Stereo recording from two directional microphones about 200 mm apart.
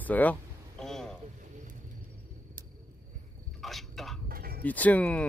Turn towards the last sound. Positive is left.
turn(degrees=5)  # may be behind; listen again after turning